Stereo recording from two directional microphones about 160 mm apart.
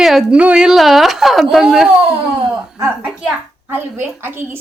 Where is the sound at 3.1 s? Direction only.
10° right (ahead or behind).